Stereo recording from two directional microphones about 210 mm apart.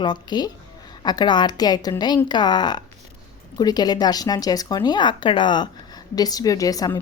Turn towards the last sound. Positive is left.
turn(degrees=15)  # may be behind; listen again after turning